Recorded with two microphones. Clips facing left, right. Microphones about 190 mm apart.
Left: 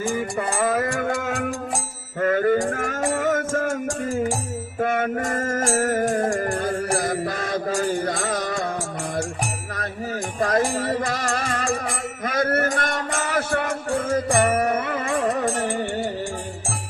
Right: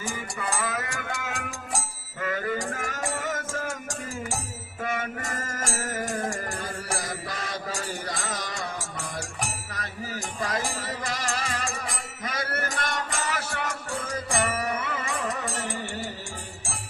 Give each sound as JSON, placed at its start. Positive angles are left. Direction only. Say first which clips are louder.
{"t": 0.0, "sound": "music", "louder": "left 9 dB", "side_deg": 50}
{"t": 12.2, "sound": "a sound", "louder": "left 10 dB", "side_deg": 50}
{"t": 14.3, "sound": "music", "louder": "left 6 dB", "side_deg": 50}